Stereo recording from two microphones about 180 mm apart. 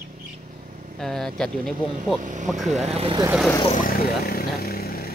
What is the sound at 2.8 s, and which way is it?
Speech, 35° right (ahead or behind).